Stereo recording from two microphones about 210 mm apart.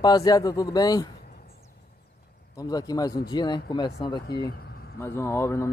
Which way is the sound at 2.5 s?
15° left (ahead or behind).